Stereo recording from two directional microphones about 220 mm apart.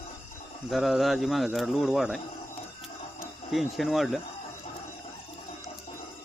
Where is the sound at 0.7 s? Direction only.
Centre (ahead or behind).